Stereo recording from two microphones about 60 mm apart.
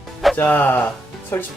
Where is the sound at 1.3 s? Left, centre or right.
Left.